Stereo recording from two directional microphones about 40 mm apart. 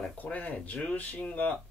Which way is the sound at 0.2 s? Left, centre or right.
Left.